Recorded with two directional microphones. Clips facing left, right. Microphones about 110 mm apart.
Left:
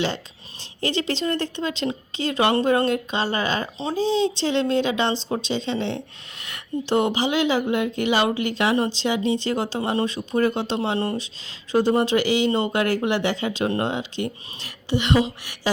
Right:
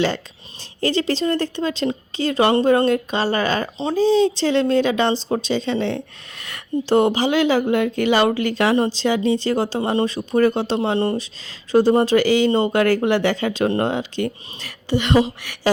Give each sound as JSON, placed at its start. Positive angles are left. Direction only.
{"t": 0.8, "sound": "speech", "side_deg": -40}
{"t": 10.9, "sound": "speech", "side_deg": -25}
{"t": 11.2, "sound": "speech", "side_deg": -40}